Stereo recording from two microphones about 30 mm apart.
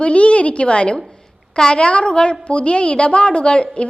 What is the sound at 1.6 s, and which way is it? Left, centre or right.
Speech, left.